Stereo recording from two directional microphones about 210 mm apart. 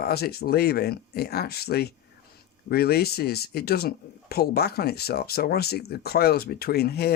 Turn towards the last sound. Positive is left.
turn(degrees=50)  # may be behind; listen again after turning